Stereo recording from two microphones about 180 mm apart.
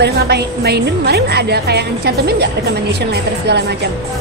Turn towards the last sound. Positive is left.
turn(degrees=-65)  # may be behind; listen again after turning